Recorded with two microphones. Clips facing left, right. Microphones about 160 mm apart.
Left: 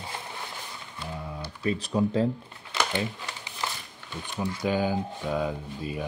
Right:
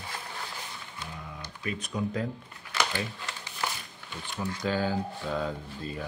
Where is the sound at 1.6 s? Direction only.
30° left (ahead or behind).